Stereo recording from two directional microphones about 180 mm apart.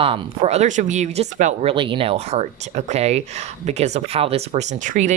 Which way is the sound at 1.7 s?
30° right (ahead or behind).